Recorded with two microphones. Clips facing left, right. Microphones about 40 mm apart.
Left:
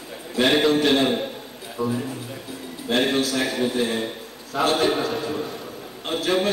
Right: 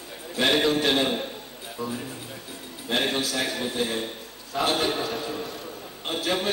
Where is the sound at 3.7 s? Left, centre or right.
Centre.